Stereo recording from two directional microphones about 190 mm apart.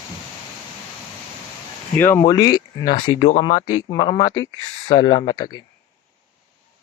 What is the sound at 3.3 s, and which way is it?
Speech, 40° left (ahead or behind).